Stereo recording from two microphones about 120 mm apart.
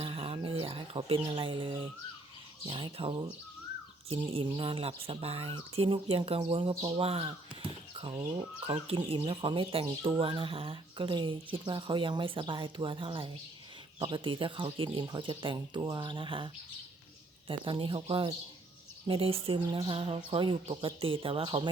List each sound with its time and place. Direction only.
0.0 s a sound: 50° right (ahead or behind)
2.6 s speech: 45° right (ahead or behind)
4.5 s speech: 45° right (ahead or behind)
17.7 s speech: 45° right (ahead or behind)